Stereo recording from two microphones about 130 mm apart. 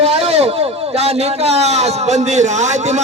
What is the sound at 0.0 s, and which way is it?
A man's voice, 55° right (ahead or behind).